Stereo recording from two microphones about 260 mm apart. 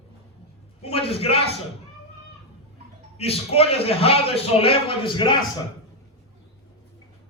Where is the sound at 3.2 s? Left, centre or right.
Left.